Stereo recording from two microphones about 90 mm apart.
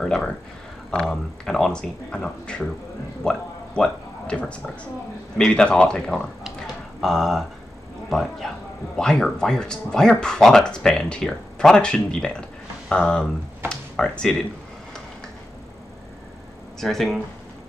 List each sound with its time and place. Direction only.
0.0 s speech: 5° left (ahead or behind)
16.8 s speech: centre (ahead or behind)